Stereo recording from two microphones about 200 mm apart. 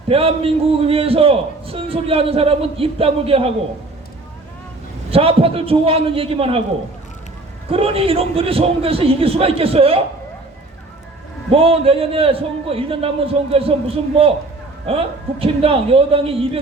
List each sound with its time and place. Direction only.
0.1 s a man's voice: 30° right (ahead or behind)
5.1 s a man's voice: 30° right (ahead or behind)
7.7 s a man's voice: 30° right (ahead or behind)
11.5 s a man's voice: 30° right (ahead or behind)